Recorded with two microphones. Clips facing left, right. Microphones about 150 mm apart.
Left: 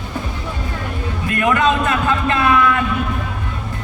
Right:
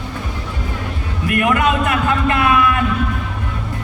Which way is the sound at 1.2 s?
20° right (ahead or behind).